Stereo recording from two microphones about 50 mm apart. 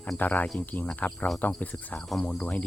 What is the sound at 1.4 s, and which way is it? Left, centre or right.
Speech, left.